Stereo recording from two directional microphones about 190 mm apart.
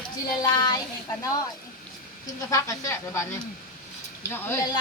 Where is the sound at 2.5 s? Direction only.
15° left (ahead or behind).